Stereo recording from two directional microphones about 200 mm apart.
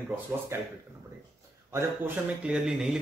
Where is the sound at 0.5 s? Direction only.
15° right (ahead or behind).